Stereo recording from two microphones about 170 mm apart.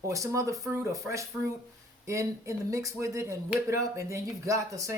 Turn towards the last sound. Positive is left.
turn(degrees=-20)  # may be behind; listen again after turning